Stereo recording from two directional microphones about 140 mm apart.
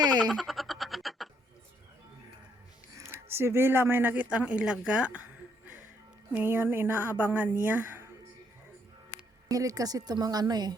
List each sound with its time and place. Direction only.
0.0 s frog: 30° right (ahead or behind)
0.3 s frog: centre (ahead or behind)
2.9 s speech: 20° right (ahead or behind)
6.3 s speech: 15° right (ahead or behind)
9.5 s a woman's voice: 25° right (ahead or behind)